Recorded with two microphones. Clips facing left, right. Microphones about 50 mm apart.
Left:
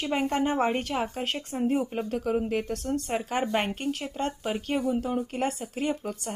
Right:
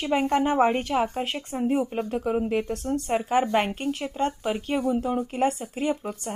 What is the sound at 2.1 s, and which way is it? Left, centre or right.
A woman's voice, right.